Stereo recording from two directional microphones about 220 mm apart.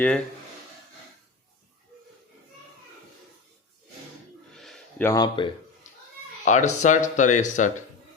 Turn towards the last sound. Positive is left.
turn(degrees=35)  # may be behind; listen again after turning